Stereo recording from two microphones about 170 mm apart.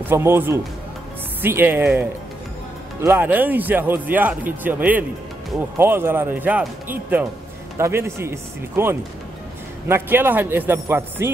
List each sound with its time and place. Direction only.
0.1 s speech: 15° right (ahead or behind)